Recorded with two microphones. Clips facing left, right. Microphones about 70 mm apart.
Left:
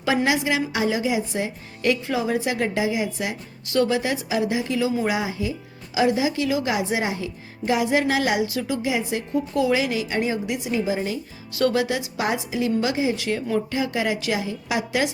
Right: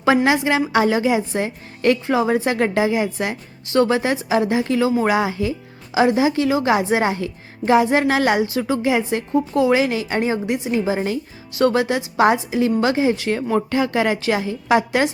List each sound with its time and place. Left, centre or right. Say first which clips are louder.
0.3 s a woman's voice: right 4 dB; right
3.7 s a woman's voice: right 4 dB; right
5.9 s a woman's voice: right 4 dB; right
9.3 s a woman's voice: right 5 dB; right
9.7 s a woman's voice: right 4 dB; right
11.5 s a woman's voice: right 4 dB; right